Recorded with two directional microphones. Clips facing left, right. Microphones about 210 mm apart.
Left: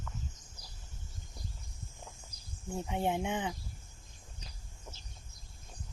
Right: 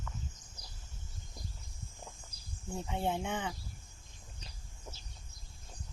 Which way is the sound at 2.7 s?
15° left (ahead or behind).